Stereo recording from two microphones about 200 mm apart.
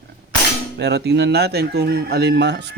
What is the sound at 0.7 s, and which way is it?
Speech, 55° right (ahead or behind).